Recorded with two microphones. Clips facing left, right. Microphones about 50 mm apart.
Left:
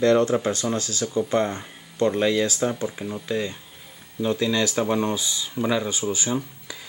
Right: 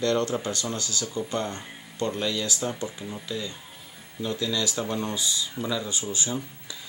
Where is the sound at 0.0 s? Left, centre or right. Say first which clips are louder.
Left 6 dB; left.